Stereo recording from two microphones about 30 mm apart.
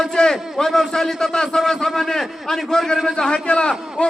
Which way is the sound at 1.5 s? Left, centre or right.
Centre.